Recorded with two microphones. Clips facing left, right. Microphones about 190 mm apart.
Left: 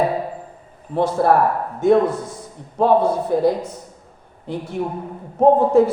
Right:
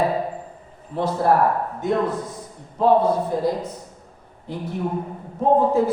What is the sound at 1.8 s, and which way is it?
Speech, 75° left (ahead or behind).